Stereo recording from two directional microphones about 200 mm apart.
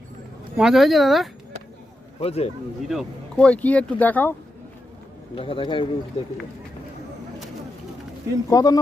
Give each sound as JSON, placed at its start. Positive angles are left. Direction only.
{"t": 0.5, "sound": "speech", "side_deg": 0}
{"t": 2.2, "sound": "speech", "side_deg": 30}
{"t": 2.9, "sound": "speech", "side_deg": 0}
{"t": 5.3, "sound": "a man's voice", "side_deg": 25}
{"t": 8.4, "sound": "speech", "side_deg": 20}